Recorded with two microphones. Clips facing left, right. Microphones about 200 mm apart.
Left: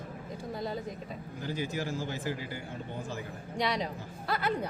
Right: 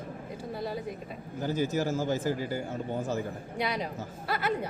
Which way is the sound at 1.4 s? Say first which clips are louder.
Right 6 dB; 45° right (ahead or behind).